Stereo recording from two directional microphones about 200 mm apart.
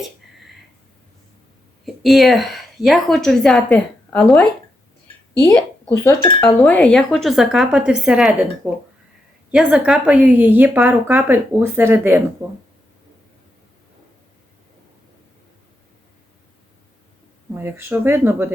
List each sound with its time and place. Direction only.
1.8 s a woman's voice: centre (ahead or behind)
17.5 s a woman's voice: 10° right (ahead or behind)